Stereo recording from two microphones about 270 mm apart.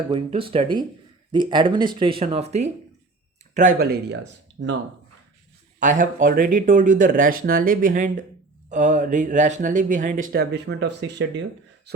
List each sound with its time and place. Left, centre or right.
0.1 s speech: centre; by 4.7 s right
5.8 s speech: right
11.9 s beatboxing: right